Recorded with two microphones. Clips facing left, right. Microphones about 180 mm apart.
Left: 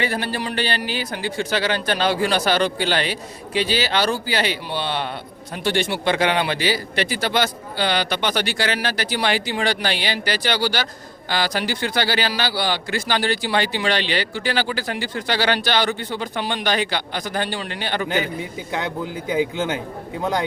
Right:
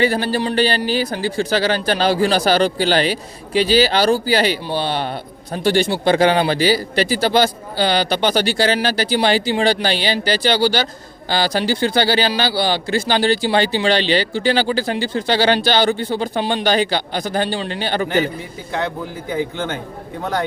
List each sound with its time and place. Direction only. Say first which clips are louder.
0.0 s a man's voice: right 6 dB; 35° right (ahead or behind)
19.3 s a man's voice: left 1 dB; 10° left (ahead or behind)